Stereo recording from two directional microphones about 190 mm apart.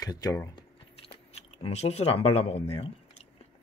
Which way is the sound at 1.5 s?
35° left (ahead or behind).